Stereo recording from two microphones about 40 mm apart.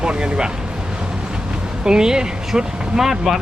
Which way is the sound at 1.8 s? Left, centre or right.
Centre.